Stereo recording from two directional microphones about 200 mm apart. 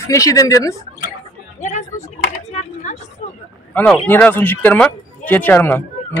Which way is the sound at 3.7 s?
10° left (ahead or behind).